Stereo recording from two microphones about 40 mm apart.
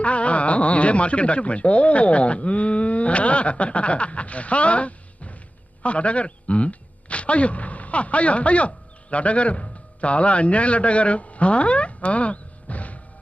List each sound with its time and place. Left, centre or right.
0.0 s a man's voice: left